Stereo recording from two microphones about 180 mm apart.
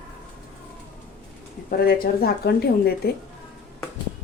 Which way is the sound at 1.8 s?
55° left (ahead or behind).